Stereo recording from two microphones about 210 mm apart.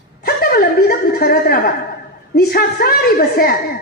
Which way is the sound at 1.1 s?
45° left (ahead or behind).